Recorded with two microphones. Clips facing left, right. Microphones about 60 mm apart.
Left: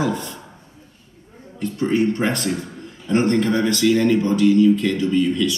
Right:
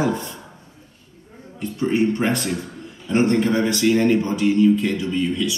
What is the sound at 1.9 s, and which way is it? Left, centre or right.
A man's voice, right.